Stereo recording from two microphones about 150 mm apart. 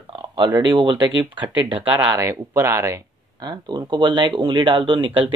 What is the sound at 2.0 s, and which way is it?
Speech, 15° right (ahead or behind).